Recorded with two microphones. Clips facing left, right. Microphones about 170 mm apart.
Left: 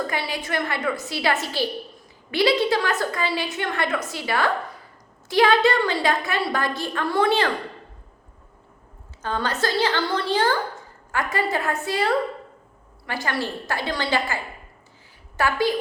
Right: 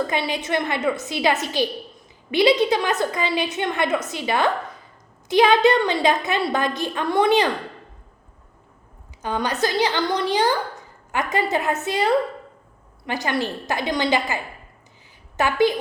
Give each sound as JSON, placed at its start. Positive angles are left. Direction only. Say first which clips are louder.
{"t": 0.1, "sound": "a woman's voice", "louder": "right 4 dB", "side_deg": -20}
{"t": 9.2, "sound": "a woman's voice", "louder": "right 2 dB", "side_deg": -15}